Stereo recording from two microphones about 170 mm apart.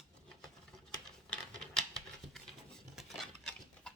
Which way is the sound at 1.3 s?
5° left (ahead or behind).